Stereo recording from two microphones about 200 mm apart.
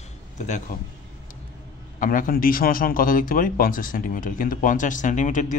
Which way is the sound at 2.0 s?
45° left (ahead or behind).